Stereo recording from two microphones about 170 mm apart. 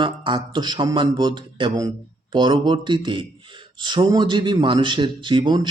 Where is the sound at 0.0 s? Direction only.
25° right (ahead or behind).